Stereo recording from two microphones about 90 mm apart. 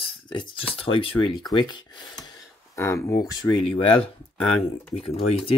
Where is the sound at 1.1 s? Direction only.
55° left (ahead or behind).